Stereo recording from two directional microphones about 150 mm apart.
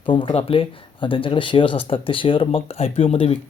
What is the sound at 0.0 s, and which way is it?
Speech, 35° left (ahead or behind).